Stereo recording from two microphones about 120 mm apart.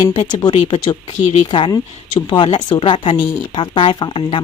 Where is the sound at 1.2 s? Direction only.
70° left (ahead or behind).